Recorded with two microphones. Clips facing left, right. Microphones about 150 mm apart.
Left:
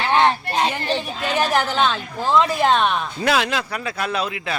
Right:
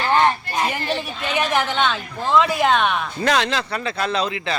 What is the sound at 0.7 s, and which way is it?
Speech, centre (ahead or behind).